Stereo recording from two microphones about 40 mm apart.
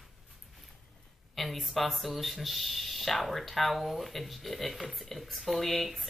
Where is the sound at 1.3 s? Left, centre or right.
Centre.